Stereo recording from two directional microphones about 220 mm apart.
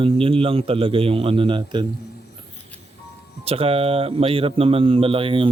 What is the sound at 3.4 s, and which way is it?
Speech, 25° right (ahead or behind).